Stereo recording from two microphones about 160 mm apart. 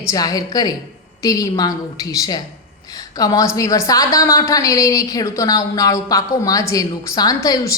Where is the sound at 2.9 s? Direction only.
25° left (ahead or behind).